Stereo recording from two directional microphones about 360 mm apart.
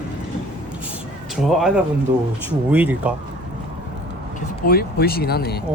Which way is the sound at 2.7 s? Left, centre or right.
Centre.